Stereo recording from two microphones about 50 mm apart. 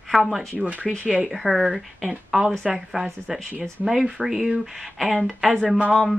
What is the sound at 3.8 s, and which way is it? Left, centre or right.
Speech, centre.